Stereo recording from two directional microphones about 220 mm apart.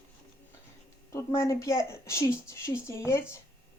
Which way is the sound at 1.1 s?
15° left (ahead or behind).